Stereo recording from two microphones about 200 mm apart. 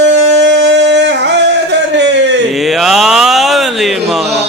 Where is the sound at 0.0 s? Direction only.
60° right (ahead or behind).